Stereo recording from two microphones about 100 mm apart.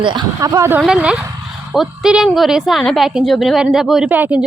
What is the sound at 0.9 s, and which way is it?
A woman's voice, 10° right (ahead or behind).